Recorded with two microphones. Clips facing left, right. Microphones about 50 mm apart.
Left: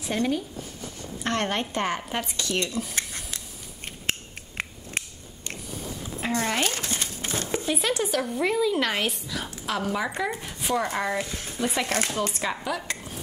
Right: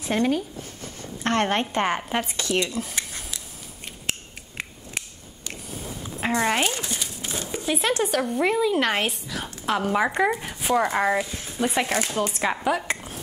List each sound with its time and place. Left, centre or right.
0.0 s a woman's voice: right; by 2.5 s centre
2.5 s a woman's voice: right
3.8 s a sound: left
6.2 s a woman's voice: right
7.0 s a sound: left
7.6 s a woman's voice: centre
10.3 s a woman's voice: centre
11.2 s speech: centre
11.7 s a woman's voice: centre
12.6 s speech: right